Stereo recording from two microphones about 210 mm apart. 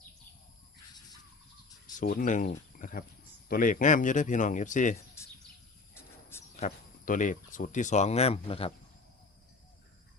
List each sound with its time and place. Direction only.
2.0 s speech: 40° left (ahead or behind)
6.6 s speech: 35° left (ahead or behind)